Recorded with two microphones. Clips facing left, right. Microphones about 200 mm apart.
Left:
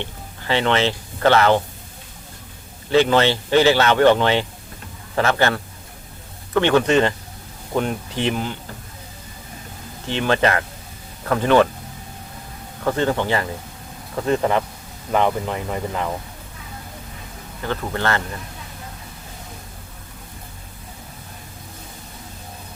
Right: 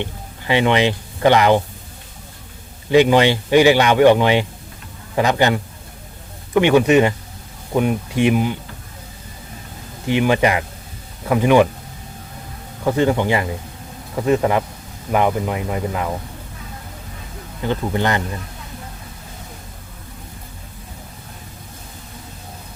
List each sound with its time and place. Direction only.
0.0 s speech: 15° right (ahead or behind)
2.9 s speech: 15° right (ahead or behind)
10.1 s speech: 10° right (ahead or behind)
12.8 s speech: 10° right (ahead or behind)
17.6 s speech: 15° right (ahead or behind)